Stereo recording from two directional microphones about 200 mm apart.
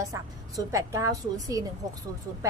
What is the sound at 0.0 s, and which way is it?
A woman's voice, 15° right (ahead or behind).